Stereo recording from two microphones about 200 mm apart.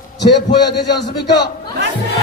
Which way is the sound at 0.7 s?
55° left (ahead or behind).